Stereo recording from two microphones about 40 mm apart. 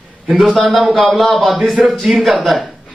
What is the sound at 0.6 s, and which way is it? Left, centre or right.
Speech, centre.